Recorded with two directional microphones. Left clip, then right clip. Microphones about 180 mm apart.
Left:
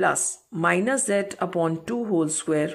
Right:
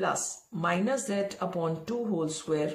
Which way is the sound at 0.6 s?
45° left (ahead or behind).